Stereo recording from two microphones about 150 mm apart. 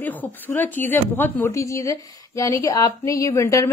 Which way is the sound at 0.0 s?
10° left (ahead or behind).